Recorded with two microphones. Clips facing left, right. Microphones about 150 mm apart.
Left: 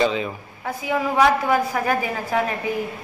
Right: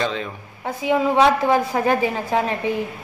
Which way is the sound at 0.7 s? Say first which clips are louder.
Right 4 dB; 25° right (ahead or behind).